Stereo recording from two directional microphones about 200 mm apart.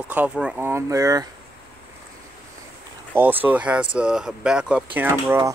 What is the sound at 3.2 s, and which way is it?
Speech, 10° right (ahead or behind).